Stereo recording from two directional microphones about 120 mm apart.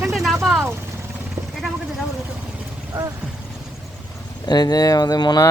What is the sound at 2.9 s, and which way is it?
Vehicle, 25° right (ahead or behind).